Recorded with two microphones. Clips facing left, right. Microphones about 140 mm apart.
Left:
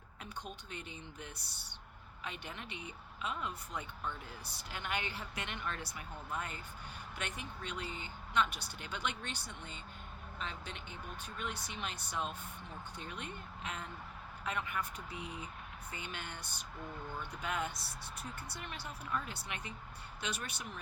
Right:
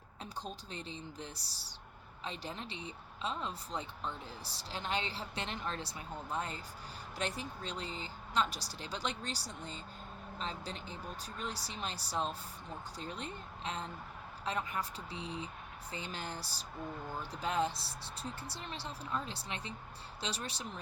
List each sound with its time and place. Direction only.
0.2 s speech: 30° right (ahead or behind)